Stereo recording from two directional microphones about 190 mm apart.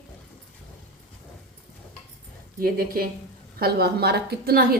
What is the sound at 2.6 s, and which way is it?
A woman's voice, 50° right (ahead or behind).